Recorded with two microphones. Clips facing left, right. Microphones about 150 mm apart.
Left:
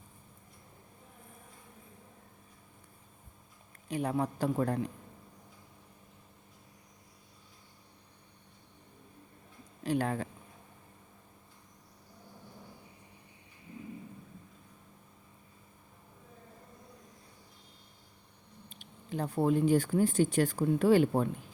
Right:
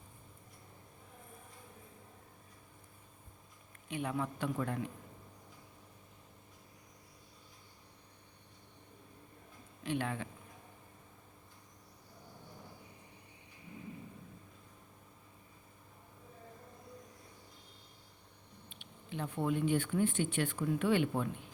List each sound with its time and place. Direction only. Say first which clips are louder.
3.8 s speech: left 5 dB; 35° left (ahead or behind)
9.8 s speech: left 5 dB; 40° left (ahead or behind)
18.7 s speech: left 6 dB; 40° left (ahead or behind)